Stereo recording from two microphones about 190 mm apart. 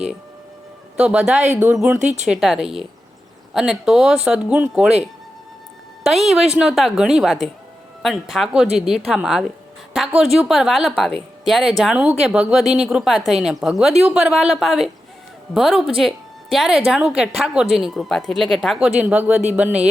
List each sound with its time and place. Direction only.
0.9 s a woman's voice: 5° right (ahead or behind)
2.0 s speech: 40° right (ahead or behind)
2.2 s a woman's voice: centre (ahead or behind)
6.1 s a woman's voice: centre (ahead or behind)